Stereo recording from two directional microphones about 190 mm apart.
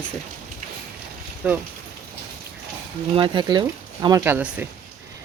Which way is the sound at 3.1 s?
25° right (ahead or behind).